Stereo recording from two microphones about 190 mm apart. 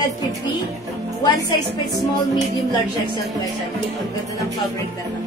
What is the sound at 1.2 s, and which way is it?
Speech, 25° left (ahead or behind).